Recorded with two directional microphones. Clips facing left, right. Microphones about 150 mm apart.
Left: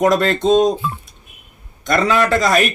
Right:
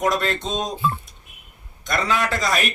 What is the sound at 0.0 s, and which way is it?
Speech, 55° left (ahead or behind).